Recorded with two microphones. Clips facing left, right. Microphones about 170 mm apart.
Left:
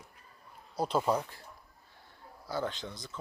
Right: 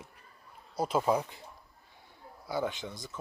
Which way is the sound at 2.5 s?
20° right (ahead or behind).